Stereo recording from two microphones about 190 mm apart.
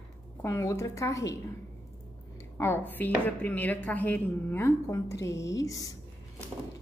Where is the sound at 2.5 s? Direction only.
10° left (ahead or behind).